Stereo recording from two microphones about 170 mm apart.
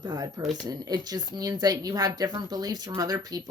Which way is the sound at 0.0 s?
25° right (ahead or behind).